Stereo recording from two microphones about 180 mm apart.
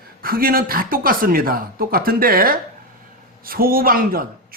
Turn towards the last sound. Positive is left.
turn(degrees=-55)  # may be behind; listen again after turning